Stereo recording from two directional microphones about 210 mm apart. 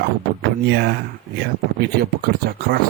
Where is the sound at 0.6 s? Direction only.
50° right (ahead or behind).